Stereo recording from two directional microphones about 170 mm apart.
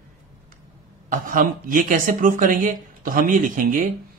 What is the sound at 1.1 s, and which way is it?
Speech, 55° right (ahead or behind).